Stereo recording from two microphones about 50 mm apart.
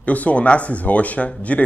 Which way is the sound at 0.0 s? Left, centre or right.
Left.